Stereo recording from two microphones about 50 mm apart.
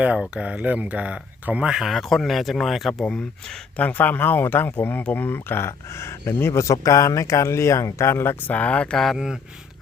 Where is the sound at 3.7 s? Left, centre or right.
Left.